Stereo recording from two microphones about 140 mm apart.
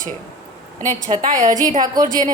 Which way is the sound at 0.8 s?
65° right (ahead or behind).